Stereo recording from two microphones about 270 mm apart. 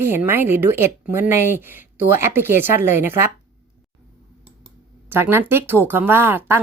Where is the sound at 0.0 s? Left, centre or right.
Centre.